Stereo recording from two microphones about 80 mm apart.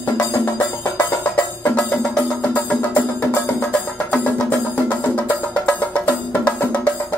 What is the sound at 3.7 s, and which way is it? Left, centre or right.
Music, centre.